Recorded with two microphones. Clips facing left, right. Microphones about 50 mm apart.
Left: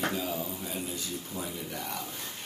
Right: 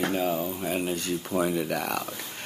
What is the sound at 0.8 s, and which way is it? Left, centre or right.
Speech, right.